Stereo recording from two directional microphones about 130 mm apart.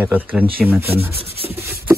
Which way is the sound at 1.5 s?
15° right (ahead or behind).